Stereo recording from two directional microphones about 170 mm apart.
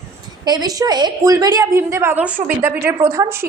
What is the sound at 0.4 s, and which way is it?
A woman's voice, 25° right (ahead or behind).